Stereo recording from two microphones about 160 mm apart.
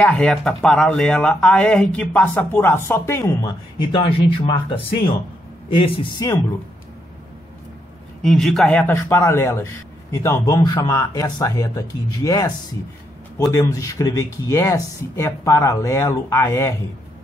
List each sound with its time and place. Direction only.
0.0 s speech: 5° left (ahead or behind)
3.9 s speech: 35° left (ahead or behind)
5.8 s a man's voice: 25° left (ahead or behind)
8.2 s a man's voice: 5° left (ahead or behind)